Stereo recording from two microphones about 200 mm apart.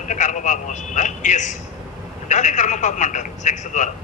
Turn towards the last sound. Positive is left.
turn(degrees=40)  # may be behind; listen again after turning